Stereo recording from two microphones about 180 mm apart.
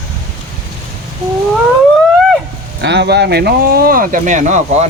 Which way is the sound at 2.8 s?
70° right (ahead or behind).